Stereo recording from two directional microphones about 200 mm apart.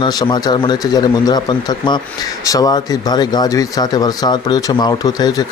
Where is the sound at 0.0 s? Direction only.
20° left (ahead or behind).